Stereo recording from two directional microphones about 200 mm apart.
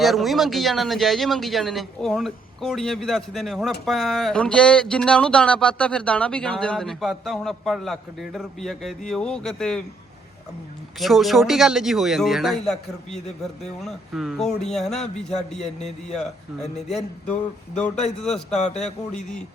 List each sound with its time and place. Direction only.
0.0 s speech: centre (ahead or behind)
11.0 s speech: centre (ahead or behind)
13.1 s a man's voice: 35° left (ahead or behind)
13.4 s speech: centre (ahead or behind)
16.6 s a man's voice: 35° left (ahead or behind)
18.2 s speech: 5° left (ahead or behind)
18.5 s a man's voice: 35° left (ahead or behind)